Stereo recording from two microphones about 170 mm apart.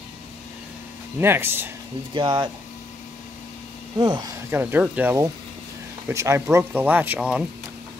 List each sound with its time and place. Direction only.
1.2 s speech: 15° right (ahead or behind)
2.1 s speech: 25° right (ahead or behind)
4.0 s speech: 25° right (ahead or behind); by 7.4 s 5° right (ahead or behind)